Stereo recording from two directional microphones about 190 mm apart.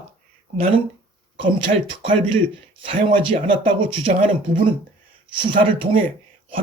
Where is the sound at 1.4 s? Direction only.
25° right (ahead or behind).